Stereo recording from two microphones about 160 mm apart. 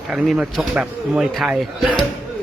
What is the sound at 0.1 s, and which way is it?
Speech, centre (ahead or behind).